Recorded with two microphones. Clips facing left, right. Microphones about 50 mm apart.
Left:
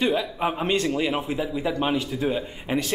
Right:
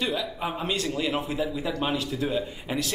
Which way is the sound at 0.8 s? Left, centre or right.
Centre.